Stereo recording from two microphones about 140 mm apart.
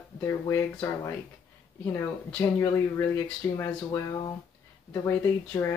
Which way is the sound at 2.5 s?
20° left (ahead or behind).